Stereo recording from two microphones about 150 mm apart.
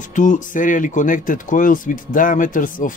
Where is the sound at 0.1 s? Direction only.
60° left (ahead or behind).